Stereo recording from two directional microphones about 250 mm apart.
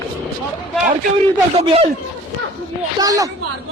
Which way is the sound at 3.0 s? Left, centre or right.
Centre.